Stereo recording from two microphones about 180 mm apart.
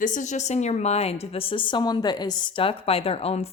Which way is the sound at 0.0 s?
45° left (ahead or behind).